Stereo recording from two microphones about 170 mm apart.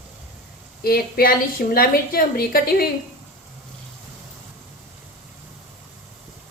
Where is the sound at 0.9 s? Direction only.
60° left (ahead or behind).